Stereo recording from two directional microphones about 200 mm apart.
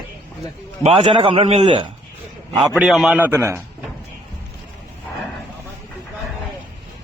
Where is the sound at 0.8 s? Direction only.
25° right (ahead or behind).